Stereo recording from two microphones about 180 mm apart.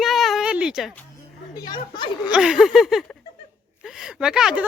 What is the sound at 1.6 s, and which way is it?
Speech, 25° left (ahead or behind).